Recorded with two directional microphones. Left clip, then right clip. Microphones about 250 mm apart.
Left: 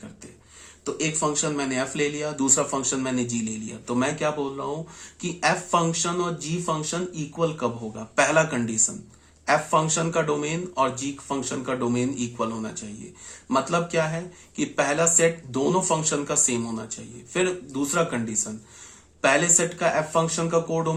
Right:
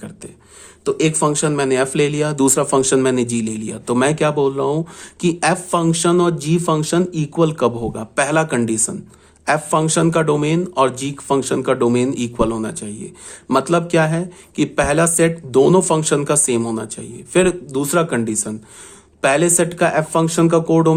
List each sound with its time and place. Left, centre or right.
0.9 s speech: right